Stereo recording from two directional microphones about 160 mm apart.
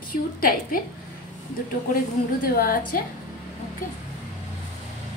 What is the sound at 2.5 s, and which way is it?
Speech, 60° left (ahead or behind).